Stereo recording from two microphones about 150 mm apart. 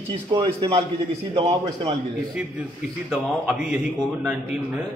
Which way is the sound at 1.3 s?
45° right (ahead or behind).